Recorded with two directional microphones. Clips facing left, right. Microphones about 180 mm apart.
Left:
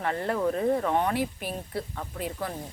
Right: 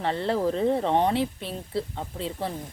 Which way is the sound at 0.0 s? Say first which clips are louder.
Right 2 dB; 30° right (ahead or behind).